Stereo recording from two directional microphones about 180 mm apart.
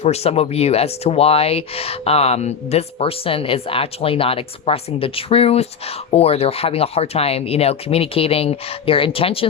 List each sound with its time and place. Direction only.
0.0 s speech: 35° left (ahead or behind)